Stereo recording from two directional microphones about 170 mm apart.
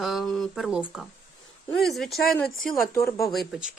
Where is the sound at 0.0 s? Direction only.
Centre (ahead or behind).